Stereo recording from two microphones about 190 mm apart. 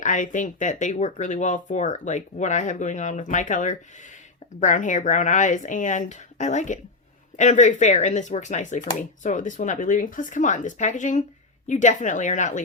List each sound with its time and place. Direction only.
0.0 s speech: 40° left (ahead or behind)